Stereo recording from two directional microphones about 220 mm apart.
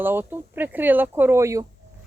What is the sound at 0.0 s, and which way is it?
Speech, 10° right (ahead or behind).